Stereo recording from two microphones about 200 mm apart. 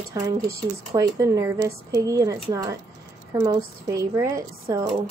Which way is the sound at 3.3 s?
15° right (ahead or behind).